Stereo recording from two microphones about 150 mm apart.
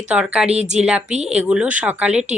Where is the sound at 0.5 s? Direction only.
50° right (ahead or behind).